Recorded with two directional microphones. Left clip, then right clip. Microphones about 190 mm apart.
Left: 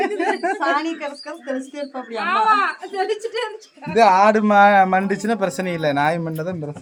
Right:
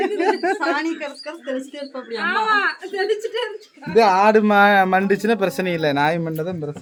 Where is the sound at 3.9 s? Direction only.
15° right (ahead or behind).